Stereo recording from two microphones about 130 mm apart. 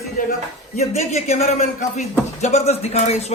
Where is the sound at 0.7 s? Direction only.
60° left (ahead or behind).